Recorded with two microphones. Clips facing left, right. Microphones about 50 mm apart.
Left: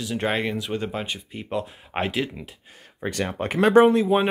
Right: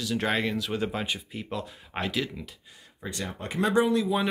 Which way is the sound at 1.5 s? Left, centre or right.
Centre.